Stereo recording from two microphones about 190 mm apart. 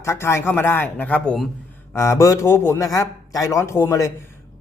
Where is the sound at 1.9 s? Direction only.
15° left (ahead or behind).